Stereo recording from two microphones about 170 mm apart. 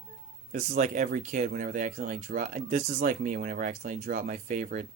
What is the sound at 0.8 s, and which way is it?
Speech, 50° right (ahead or behind).